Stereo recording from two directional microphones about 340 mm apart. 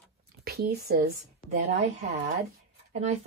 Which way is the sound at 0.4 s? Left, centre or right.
Right.